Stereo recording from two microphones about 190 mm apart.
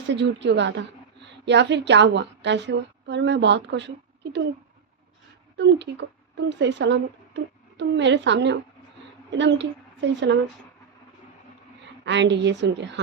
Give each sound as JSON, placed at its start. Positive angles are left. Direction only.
{"t": 0.1, "sound": "a woman's voice", "side_deg": -70}
{"t": 5.5, "sound": "a woman's voice", "side_deg": -65}
{"t": 12.0, "sound": "a woman's voice", "side_deg": -70}